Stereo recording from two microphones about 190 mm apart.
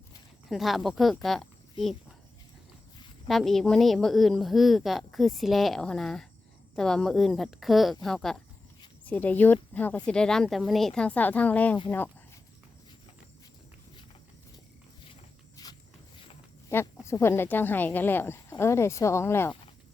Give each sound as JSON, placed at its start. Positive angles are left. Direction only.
{"t": 0.4, "sound": "a woman's voice", "side_deg": 0}
{"t": 3.2, "sound": "a woman's voice", "side_deg": 0}
{"t": 15.1, "sound": "walk", "side_deg": 20}
{"t": 16.6, "sound": "speech", "side_deg": 15}